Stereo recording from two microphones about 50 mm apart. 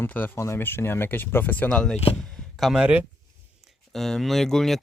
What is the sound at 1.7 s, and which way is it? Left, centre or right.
Speech, centre.